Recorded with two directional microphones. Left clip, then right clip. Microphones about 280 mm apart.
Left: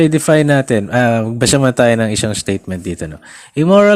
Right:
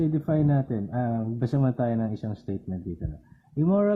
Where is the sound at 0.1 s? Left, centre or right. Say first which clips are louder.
Left 15 dB; left.